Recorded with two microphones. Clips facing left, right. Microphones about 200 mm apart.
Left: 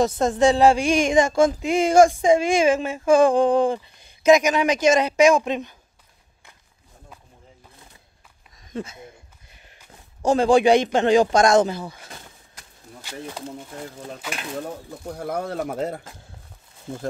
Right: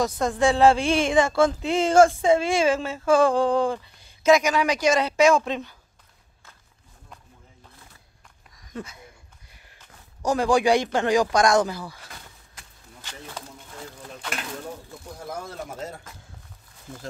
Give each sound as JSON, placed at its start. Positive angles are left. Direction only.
{"t": 0.0, "sound": "speech", "side_deg": 25}
{"t": 8.5, "sound": "a sound", "side_deg": 25}
{"t": 10.2, "sound": "speech", "side_deg": 25}
{"t": 15.1, "sound": "speech", "side_deg": 60}